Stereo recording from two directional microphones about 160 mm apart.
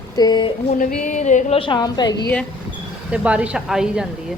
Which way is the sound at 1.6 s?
30° left (ahead or behind).